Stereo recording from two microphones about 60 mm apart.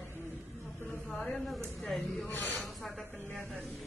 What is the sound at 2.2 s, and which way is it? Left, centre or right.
Speech, left.